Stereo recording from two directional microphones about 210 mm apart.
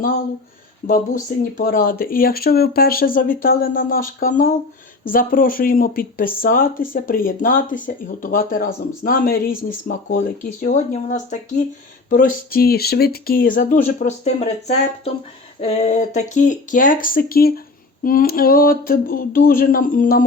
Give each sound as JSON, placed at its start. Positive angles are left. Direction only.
{"t": 0.9, "sound": "speech", "side_deg": 40}
{"t": 15.6, "sound": "speech", "side_deg": 30}